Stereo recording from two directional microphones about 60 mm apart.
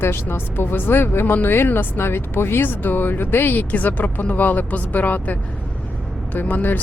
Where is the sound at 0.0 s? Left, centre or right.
Left.